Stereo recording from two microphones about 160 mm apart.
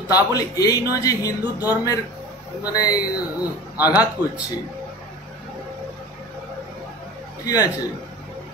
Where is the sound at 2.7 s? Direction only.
25° left (ahead or behind).